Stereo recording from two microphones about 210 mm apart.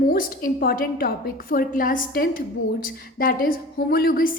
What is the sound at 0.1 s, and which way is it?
A woman's voice, 45° left (ahead or behind).